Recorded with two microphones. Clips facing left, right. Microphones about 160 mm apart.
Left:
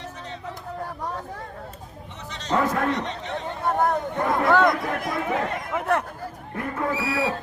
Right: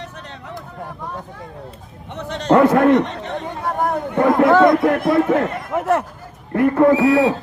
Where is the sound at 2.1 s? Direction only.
60° right (ahead or behind).